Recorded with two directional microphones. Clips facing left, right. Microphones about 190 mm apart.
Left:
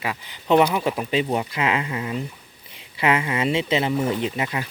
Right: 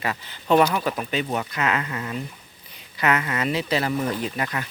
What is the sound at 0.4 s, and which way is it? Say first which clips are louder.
Speech: left 1 dB; 20° left (ahead or behind).